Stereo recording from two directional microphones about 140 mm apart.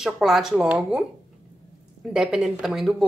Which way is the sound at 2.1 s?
5° right (ahead or behind).